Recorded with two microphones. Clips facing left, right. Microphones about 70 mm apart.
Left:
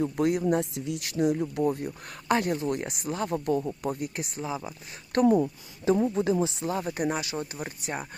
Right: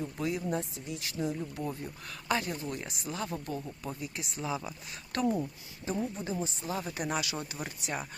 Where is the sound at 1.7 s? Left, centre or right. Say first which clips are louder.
Left 7 dB; left.